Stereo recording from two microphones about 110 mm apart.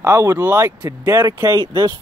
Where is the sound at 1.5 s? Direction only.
50° right (ahead or behind).